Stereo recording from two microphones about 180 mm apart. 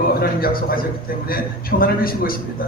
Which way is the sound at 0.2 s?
55° left (ahead or behind).